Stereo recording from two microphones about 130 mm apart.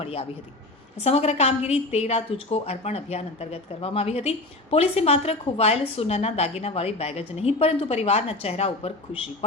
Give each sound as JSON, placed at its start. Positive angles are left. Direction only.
{"t": 0.0, "sound": "a woman's voice", "side_deg": 50}